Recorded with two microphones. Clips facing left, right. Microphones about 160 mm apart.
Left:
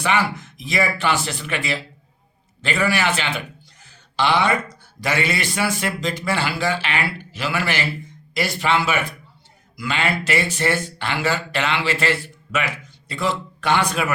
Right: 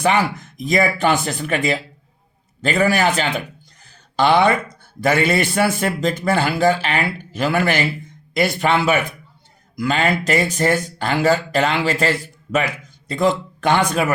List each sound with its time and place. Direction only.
0.0 s speech: 45° right (ahead or behind)